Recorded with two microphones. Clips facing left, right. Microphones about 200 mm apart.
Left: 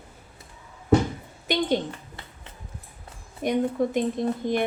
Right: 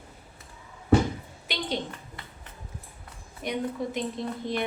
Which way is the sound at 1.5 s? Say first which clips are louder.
Left 10 dB; 45° left (ahead or behind).